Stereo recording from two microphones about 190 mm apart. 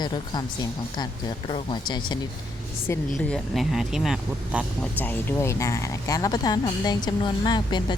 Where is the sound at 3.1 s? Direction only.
Centre (ahead or behind).